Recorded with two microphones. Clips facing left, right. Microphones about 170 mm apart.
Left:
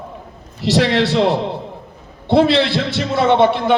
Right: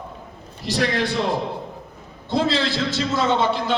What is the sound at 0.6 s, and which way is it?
Speech, 90° left.